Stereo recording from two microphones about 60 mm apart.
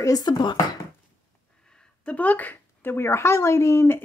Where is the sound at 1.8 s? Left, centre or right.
Left.